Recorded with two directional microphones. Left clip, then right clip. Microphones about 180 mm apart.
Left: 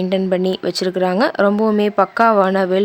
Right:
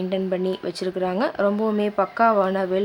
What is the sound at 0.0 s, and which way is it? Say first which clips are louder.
Speech: left 6 dB; 40° left (ahead or behind).